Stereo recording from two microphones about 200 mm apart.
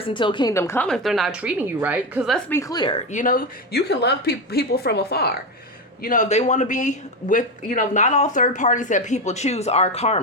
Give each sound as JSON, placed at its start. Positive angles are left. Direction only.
{"t": 0.0, "sound": "a woman's voice", "side_deg": 25}
{"t": 2.5, "sound": "a woman's voice", "side_deg": 15}
{"t": 3.1, "sound": "a woman's voice", "side_deg": 40}
{"t": 6.0, "sound": "speech", "side_deg": 40}